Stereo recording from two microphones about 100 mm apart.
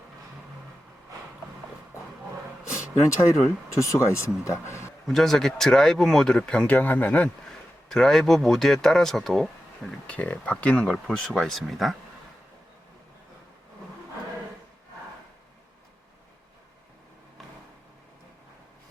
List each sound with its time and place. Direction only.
2.6 s speech: 30° left (ahead or behind)
5.0 s speech: 5° left (ahead or behind)
7.9 s speech: 5° left (ahead or behind)